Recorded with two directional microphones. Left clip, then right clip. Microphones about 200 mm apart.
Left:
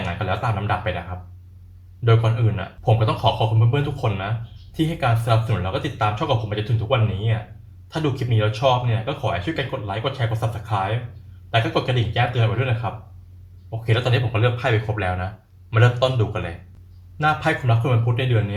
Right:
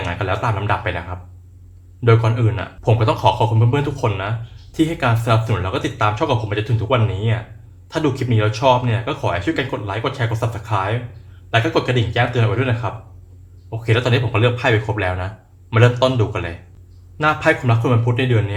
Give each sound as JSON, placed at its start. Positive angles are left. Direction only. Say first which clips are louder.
{"t": 0.1, "sound": "speech", "louder": "right 4 dB", "side_deg": -25}
{"t": 2.0, "sound": "speech", "louder": "right 5 dB", "side_deg": -25}